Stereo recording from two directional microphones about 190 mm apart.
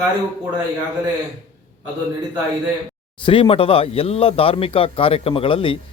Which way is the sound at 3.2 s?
30° left (ahead or behind).